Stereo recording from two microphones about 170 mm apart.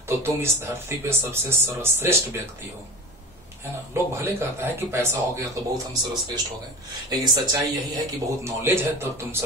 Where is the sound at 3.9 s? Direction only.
15° right (ahead or behind).